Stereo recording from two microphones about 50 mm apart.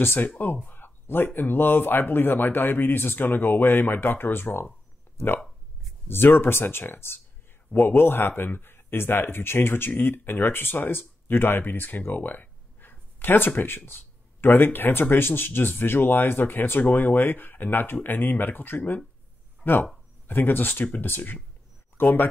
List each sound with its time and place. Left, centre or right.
0.0 s speech: left
6.0 s speech: left